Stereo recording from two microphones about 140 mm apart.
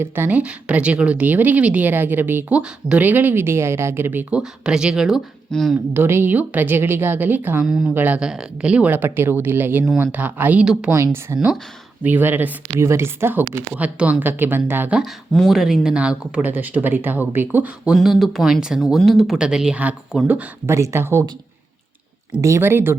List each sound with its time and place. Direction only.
0.0 s speech: 10° right (ahead or behind)
5.9 s speech: 15° right (ahead or behind)
10.9 s speech: 20° right (ahead or behind)
15.3 s speech: centre (ahead or behind); by 21.2 s 20° right (ahead or behind)
22.4 s speech: 20° right (ahead or behind)